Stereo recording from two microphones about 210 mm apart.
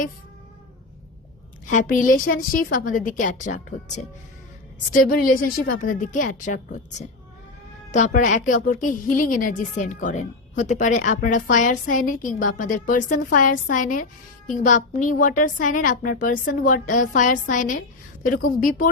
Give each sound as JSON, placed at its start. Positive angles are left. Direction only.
{"t": 1.6, "sound": "a woman's voice", "side_deg": 40}
{"t": 7.9, "sound": "a woman's voice", "side_deg": 35}